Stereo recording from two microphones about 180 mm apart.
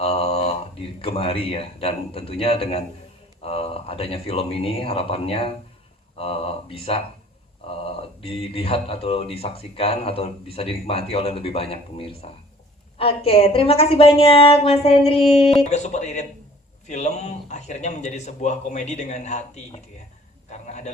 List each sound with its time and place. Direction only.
0.0 s a man's voice: 35° left (ahead or behind)